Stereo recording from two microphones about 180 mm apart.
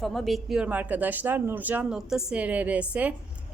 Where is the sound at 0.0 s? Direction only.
Centre (ahead or behind).